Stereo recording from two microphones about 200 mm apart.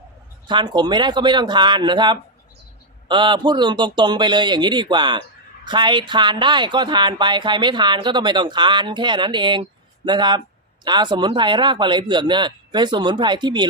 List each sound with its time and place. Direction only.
0.4 s speech: 20° right (ahead or behind)